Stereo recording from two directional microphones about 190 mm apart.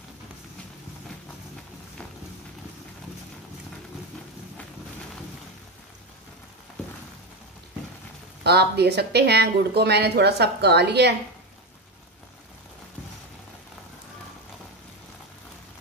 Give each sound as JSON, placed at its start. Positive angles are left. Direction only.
{"t": 8.5, "sound": "speech", "side_deg": -60}